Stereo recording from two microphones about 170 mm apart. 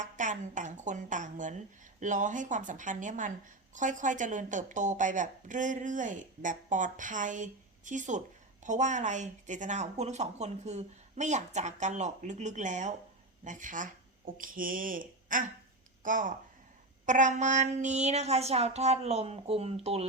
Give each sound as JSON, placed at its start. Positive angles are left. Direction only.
{"t": 0.0, "sound": "a woman's voice", "side_deg": -50}